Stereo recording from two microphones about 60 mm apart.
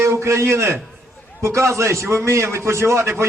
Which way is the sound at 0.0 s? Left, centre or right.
Right.